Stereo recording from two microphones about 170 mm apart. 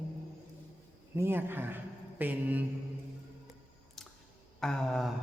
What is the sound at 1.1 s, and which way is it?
Speech, 15° right (ahead or behind).